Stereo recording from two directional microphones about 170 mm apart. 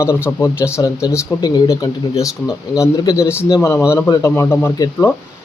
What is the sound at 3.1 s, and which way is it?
Speech, 15° left (ahead or behind).